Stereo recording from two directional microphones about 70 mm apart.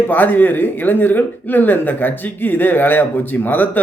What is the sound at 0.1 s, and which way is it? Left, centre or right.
Speech, left.